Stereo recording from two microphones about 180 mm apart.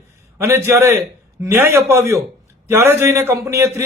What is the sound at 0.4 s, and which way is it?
A man's voice, 15° right (ahead or behind).